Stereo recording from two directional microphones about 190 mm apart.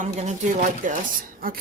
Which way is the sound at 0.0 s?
35° right (ahead or behind).